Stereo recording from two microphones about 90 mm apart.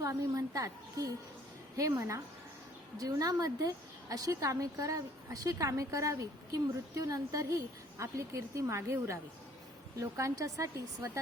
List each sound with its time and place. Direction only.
0.0 s a woman's voice: 40° right (ahead or behind)